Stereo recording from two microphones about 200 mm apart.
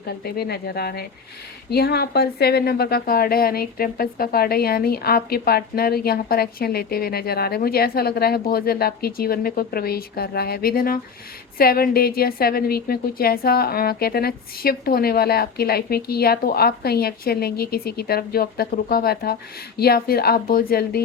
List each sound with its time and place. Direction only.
0.3 s a woman's voice: 50° left (ahead or behind)